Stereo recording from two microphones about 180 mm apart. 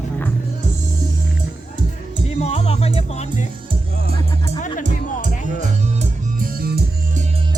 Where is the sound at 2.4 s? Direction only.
35° left (ahead or behind).